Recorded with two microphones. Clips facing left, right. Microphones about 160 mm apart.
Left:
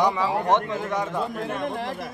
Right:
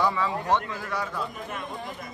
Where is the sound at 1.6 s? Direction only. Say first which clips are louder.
Left 8 dB; 90° left.